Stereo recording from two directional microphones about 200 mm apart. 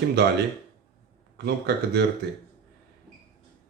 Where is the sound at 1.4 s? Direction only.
55° right (ahead or behind).